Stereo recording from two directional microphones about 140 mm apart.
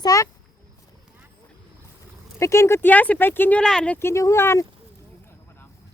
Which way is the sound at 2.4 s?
20° left (ahead or behind).